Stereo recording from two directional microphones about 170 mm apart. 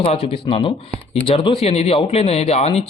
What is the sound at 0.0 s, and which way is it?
A man's voice, 35° left (ahead or behind).